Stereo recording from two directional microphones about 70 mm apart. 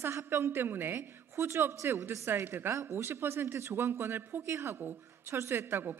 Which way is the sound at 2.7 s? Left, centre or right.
Right.